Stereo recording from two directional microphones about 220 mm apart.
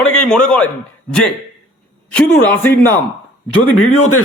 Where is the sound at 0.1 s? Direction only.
5° left (ahead or behind).